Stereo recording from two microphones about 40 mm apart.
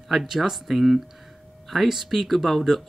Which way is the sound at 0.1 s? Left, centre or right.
Centre.